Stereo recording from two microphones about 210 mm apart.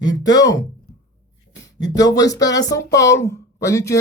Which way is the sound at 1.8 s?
20° left (ahead or behind).